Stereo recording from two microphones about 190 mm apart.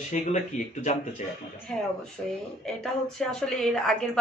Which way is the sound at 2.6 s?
5° left (ahead or behind).